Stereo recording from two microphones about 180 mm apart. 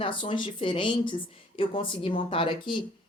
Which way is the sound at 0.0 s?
30° left (ahead or behind).